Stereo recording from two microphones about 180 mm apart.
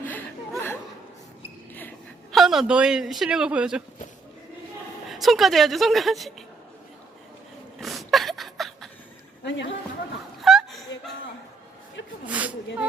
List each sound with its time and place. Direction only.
0.0 s chuckle: 10° left (ahead or behind)
2.3 s a man's voice: centre (ahead or behind)
5.0 s a man's voice: centre (ahead or behind)
7.8 s a sound: centre (ahead or behind)
9.4 s speech: 80° left
10.4 s chuckle: centre (ahead or behind)
12.2 s speech: 10° right (ahead or behind)